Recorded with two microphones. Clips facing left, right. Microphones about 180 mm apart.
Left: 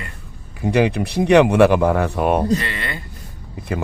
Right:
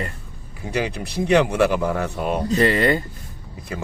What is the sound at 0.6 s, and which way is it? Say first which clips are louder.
A man's voice: left 8 dB; 60° left (ahead or behind).